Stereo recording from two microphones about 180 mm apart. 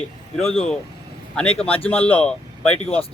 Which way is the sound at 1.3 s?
5° left (ahead or behind).